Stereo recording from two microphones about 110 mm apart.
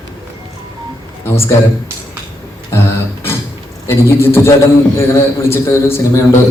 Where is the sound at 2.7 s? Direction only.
25° left (ahead or behind).